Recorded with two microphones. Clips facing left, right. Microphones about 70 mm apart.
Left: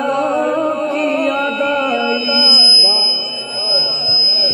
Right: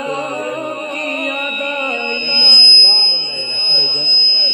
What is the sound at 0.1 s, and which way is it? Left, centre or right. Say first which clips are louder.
Music: left 6 dB; centre.